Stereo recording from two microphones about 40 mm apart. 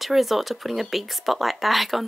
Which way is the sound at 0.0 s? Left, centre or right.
Centre.